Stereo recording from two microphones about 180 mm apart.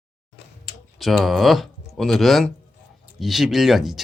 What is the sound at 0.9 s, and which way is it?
Speech, centre (ahead or behind).